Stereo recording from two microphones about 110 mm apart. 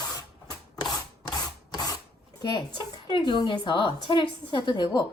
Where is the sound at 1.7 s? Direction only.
35° left (ahead or behind).